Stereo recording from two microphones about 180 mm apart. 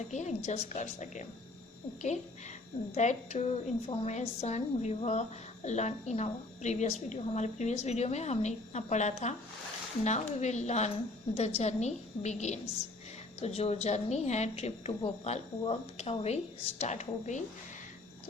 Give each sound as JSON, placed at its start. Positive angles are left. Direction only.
{"t": 0.0, "sound": "a woman's voice", "side_deg": 40}
{"t": 2.9, "sound": "a woman's voice", "side_deg": 40}